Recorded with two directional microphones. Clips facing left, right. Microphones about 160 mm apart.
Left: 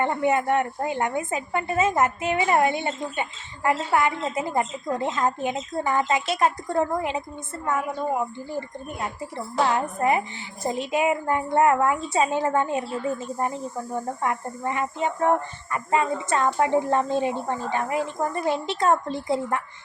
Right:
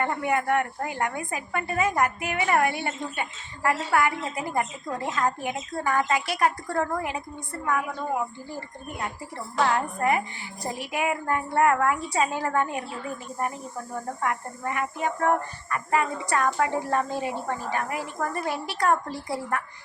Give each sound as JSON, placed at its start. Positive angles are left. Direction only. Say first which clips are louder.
{"t": 0.0, "sound": "a woman's voice", "louder": "left 3 dB", "side_deg": 25}
{"t": 9.6, "sound": "a woman's voice", "louder": "left 2 dB", "side_deg": 20}